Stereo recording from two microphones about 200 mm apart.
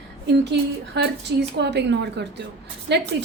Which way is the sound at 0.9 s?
60° right (ahead or behind).